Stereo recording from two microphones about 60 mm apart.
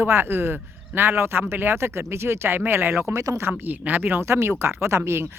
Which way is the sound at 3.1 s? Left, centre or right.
Right.